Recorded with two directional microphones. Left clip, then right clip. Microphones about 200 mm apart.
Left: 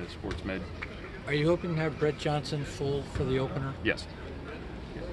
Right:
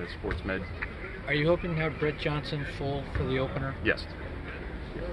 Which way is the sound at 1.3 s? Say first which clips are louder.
Right 1 dB; 70° left (ahead or behind).